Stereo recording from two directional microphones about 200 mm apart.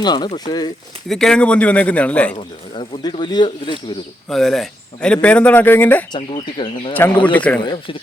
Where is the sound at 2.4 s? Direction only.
25° left (ahead or behind).